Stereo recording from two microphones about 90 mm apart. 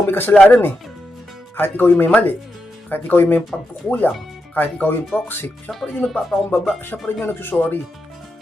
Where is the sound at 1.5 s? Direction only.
20° left (ahead or behind).